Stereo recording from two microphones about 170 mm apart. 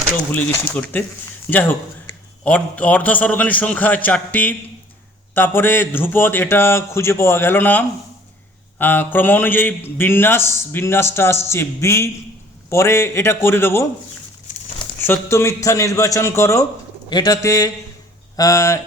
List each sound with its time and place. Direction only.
0.3 s a man's voice: 10° left (ahead or behind)
15.0 s a man's voice: 15° left (ahead or behind)